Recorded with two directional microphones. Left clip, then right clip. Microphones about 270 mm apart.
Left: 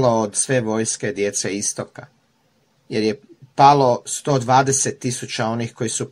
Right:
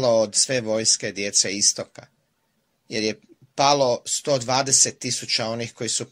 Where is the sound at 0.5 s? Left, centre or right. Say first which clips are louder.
Left 5 dB; right.